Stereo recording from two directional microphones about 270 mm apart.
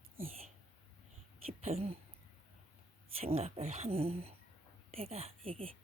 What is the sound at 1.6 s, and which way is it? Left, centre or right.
Speech, right.